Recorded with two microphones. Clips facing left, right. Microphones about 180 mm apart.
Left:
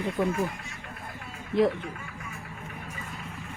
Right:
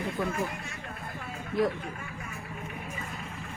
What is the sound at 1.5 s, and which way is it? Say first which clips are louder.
Speech: left 4 dB; 25° left (ahead or behind).